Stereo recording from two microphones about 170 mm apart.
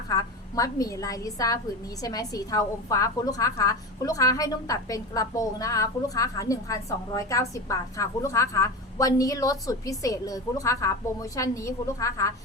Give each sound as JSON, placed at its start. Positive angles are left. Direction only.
{"t": 0.1, "sound": "a woman's voice", "side_deg": 20}